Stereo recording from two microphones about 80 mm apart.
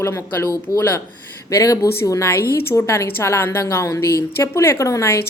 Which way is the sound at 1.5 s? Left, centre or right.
Left.